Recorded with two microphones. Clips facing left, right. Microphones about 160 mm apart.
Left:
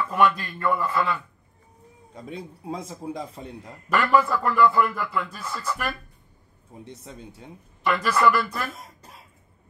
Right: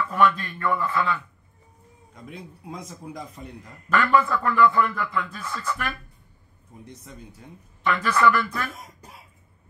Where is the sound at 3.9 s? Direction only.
5° left (ahead or behind).